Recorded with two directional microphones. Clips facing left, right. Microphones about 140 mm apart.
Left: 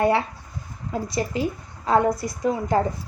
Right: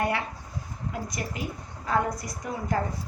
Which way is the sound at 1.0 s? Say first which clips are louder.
Left 9 dB; 30° left (ahead or behind).